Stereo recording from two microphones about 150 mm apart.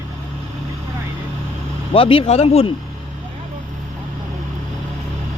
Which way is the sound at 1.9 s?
35° left (ahead or behind).